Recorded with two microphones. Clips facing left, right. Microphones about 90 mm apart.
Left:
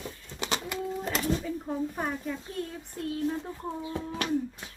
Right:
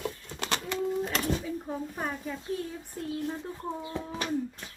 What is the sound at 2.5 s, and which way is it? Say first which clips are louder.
Speech: right 2 dB; 5° right (ahead or behind).